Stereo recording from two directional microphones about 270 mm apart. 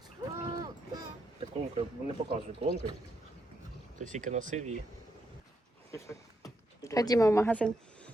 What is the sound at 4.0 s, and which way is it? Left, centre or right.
Speech, right.